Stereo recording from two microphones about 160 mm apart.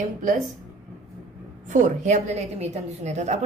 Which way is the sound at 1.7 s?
50° right (ahead or behind).